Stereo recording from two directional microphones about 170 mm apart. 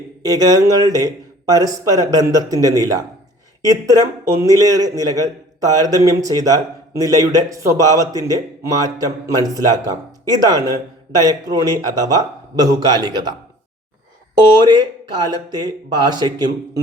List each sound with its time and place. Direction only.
0.3 s a man's voice: 20° right (ahead or behind)
14.3 s a man's voice: 25° right (ahead or behind)